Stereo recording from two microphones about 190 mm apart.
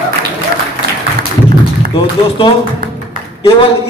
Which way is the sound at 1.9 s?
25° left (ahead or behind).